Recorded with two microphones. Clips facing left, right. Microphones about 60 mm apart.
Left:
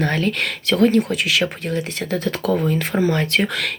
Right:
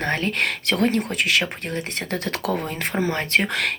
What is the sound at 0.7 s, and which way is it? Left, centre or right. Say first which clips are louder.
Speech: left 7 dB; right.